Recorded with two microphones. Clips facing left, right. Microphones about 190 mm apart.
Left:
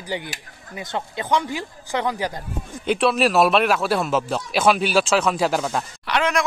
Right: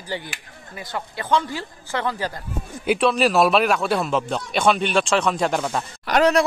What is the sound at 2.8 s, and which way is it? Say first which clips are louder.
Speech: even; centre (ahead or behind).